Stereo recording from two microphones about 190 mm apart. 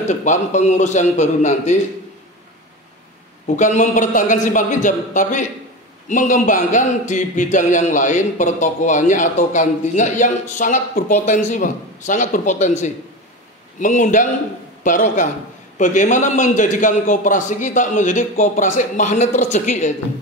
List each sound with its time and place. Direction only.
0.0 s speech: 40° left (ahead or behind)
3.4 s a man's voice: 40° left (ahead or behind)